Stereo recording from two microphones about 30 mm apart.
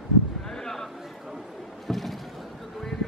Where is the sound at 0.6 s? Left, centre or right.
Centre.